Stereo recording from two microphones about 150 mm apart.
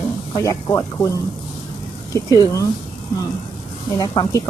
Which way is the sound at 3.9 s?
30° left (ahead or behind).